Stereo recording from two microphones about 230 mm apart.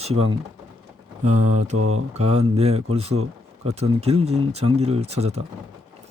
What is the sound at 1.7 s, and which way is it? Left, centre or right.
Speech, right.